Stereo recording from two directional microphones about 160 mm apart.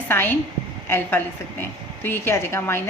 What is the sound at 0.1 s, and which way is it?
A woman's voice, 15° left (ahead or behind).